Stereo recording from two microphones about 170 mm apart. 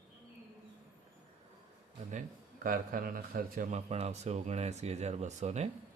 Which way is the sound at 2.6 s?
55° right (ahead or behind).